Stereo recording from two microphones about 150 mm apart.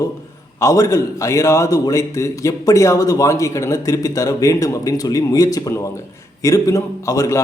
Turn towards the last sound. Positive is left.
turn(degrees=20)  # may be behind; listen again after turning